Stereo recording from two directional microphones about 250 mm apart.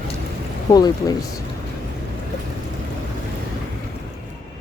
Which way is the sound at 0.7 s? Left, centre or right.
Centre.